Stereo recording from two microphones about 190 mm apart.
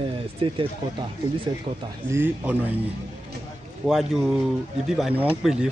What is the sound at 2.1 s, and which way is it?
Speech, 10° right (ahead or behind).